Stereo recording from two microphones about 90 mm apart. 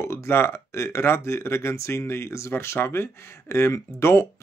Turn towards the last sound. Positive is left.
turn(degrees=30)  # may be behind; listen again after turning